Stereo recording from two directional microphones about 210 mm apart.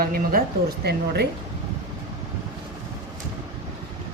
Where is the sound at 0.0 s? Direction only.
45° right (ahead or behind).